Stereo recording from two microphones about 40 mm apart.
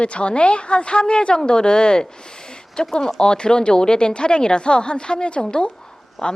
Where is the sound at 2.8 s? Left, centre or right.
Centre.